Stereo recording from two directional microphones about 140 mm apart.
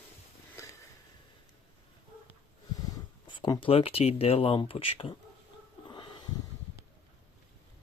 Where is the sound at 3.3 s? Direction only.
35° left (ahead or behind).